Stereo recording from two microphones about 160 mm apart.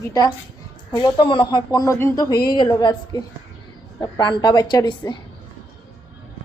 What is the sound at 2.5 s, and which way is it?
Speech, 30° left (ahead or behind).